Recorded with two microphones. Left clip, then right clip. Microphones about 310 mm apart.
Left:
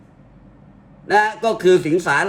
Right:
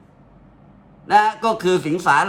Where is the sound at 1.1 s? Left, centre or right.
Right.